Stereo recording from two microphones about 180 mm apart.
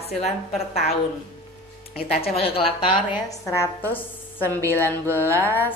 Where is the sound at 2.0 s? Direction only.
55° left (ahead or behind).